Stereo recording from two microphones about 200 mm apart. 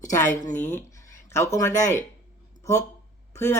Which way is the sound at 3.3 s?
10° left (ahead or behind).